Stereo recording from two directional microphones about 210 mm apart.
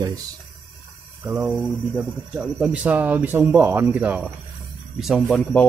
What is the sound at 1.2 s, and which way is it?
Speech, 5° right (ahead or behind).